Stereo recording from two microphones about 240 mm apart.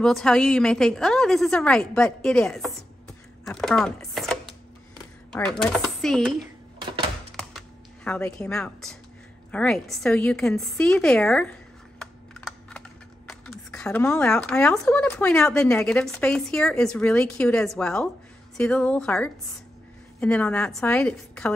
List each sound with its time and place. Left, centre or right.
0.0 s a woman's voice: centre
6.8 s typewriter: centre
7.3 s typing: centre
9.5 s speech: centre
12.0 s computer keyboard: centre
13.3 s speech: centre